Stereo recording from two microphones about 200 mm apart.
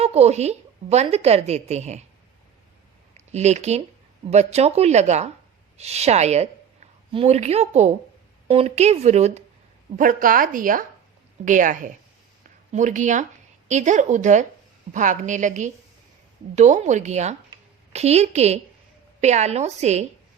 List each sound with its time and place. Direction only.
0.0 s a woman's voice: 30° right (ahead or behind)
3.2 s a woman's voice: 35° right (ahead or behind)